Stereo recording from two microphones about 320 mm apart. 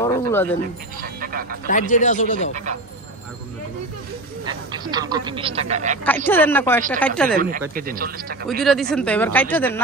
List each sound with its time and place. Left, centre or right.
0.0 s speech: centre
1.0 s music: right
1.7 s speech: left
4.5 s speech: centre
6.0 s speech: centre
7.7 s speech: right
8.5 s speech: centre